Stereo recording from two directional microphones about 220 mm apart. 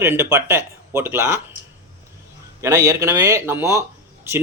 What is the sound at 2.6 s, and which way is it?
Speech, 15° right (ahead or behind).